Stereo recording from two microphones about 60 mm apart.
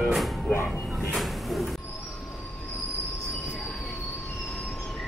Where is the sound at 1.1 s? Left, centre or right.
Centre.